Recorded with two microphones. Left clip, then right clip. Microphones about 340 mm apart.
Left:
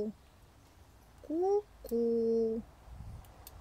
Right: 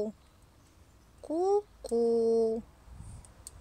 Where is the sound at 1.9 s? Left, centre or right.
Right.